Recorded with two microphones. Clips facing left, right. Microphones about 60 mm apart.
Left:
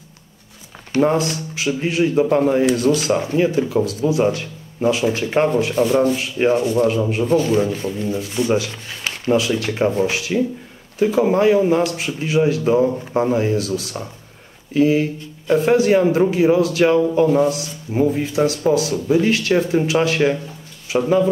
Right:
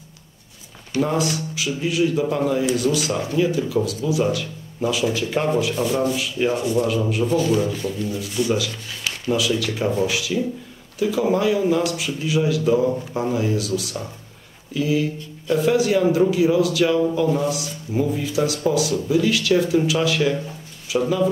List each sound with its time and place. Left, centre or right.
0.9 s speech: left